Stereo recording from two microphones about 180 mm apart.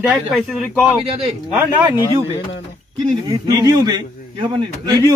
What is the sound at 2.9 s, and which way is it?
A man's voice, 25° right (ahead or behind).